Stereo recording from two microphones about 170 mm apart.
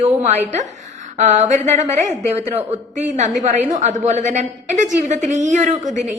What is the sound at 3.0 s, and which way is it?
A woman's voice, 45° right (ahead or behind).